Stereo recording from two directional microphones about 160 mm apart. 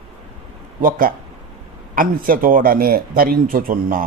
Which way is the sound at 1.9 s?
60° right (ahead or behind).